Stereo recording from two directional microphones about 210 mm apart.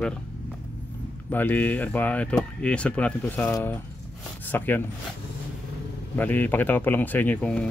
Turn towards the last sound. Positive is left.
turn(degrees=5)  # may be behind; listen again after turning